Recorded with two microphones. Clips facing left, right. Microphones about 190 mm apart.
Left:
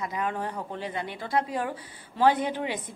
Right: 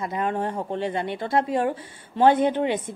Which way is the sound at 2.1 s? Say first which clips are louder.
Right 5 dB; 25° right (ahead or behind).